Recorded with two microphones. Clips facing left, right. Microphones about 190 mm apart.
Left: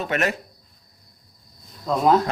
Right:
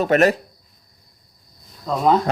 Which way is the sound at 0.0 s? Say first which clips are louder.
Right 8 dB; 40° right (ahead or behind).